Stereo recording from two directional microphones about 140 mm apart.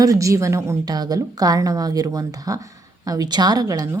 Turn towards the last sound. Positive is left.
turn(degrees=-25)  # may be behind; listen again after turning